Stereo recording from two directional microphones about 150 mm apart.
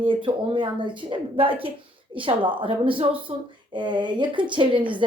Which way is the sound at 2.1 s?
35° right (ahead or behind).